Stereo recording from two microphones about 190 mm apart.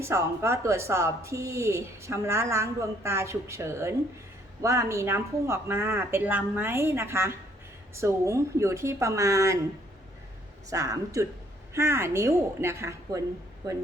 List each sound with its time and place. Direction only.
0.0 s speech: 15° right (ahead or behind)
10.7 s speech: 15° right (ahead or behind)